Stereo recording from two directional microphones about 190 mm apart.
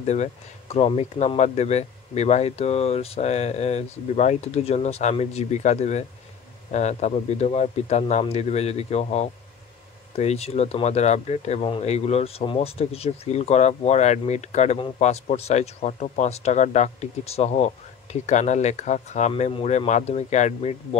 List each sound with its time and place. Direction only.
0.0 s speech: 35° left (ahead or behind)